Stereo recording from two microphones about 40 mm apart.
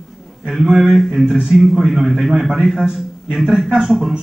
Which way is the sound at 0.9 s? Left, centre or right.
Centre.